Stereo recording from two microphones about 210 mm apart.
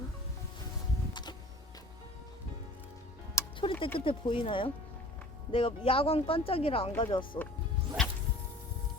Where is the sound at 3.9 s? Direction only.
25° left (ahead or behind).